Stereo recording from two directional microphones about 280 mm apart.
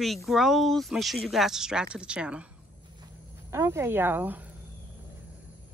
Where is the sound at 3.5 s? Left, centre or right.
Centre.